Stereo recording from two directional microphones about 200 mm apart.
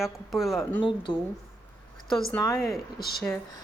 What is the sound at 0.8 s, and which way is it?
Speech, 25° left (ahead or behind).